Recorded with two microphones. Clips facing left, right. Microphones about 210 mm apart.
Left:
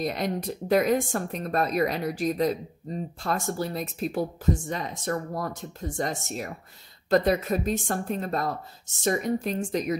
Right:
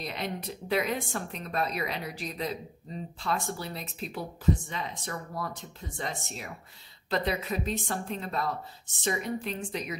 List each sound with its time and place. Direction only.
0.0 s a woman's voice: 45° left (ahead or behind)